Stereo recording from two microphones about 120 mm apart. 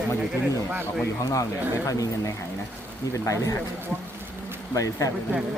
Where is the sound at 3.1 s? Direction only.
25° left (ahead or behind).